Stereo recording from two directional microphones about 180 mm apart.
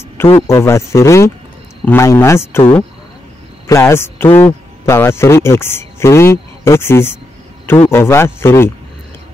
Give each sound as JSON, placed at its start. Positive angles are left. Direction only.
{"t": 0.5, "sound": "a man's voice", "side_deg": 15}